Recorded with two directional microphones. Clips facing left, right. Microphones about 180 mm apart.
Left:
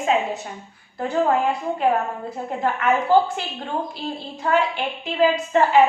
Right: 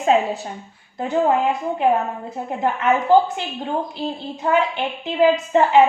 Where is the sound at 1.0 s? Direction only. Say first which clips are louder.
Right 2 dB; 20° right (ahead or behind).